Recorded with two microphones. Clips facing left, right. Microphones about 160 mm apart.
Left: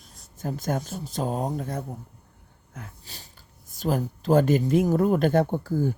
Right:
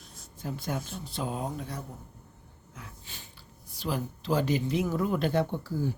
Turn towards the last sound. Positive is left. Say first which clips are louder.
# left 6 dB
turn(degrees=50)  # may be behind; listen again after turning